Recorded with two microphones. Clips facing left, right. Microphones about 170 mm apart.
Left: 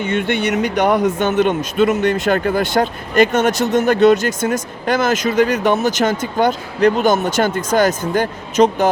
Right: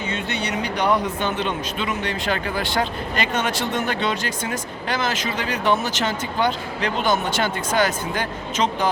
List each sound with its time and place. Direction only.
0.0 s speech: 55° left (ahead or behind)